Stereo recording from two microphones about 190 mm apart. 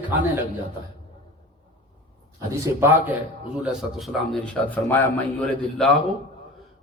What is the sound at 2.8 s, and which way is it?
Speech, 10° right (ahead or behind).